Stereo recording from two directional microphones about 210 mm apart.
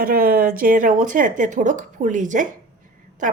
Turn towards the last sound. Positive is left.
turn(degrees=-35)  # may be behind; listen again after turning